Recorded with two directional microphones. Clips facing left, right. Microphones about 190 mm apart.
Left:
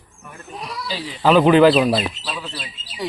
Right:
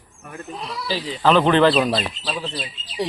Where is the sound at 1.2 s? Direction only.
5° left (ahead or behind).